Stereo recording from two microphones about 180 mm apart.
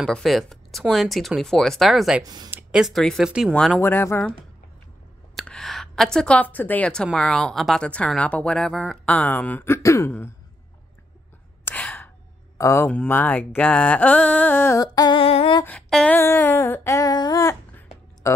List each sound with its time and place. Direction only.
0.0 s a woman's voice: centre (ahead or behind)
2.2 s speech: 20° right (ahead or behind)
2.5 s a woman's voice: 5° right (ahead or behind); by 4.3 s 10° left (ahead or behind)
5.3 s a woman's voice: 5° left (ahead or behind)
11.6 s gasp: 10° left (ahead or behind)
12.5 s a sound: 15° left (ahead or behind); by 15.6 s 30° left (ahead or behind)
15.6 s humming: 5° left (ahead or behind)